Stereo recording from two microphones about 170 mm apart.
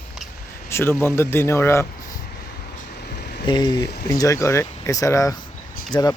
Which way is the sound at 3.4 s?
25° left (ahead or behind).